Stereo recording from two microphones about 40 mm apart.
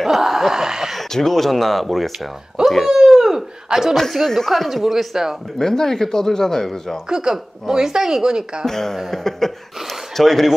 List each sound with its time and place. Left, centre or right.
0.0 s a sound: centre
1.1 s speech: centre
2.9 s speech: centre
4.2 s speech: centre
4.6 s a woman's voice: centre
5.6 s speech: centre
7.1 s a woman's voice: centre
8.6 s speech: centre